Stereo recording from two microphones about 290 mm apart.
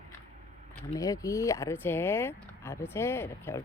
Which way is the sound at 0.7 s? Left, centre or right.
Centre.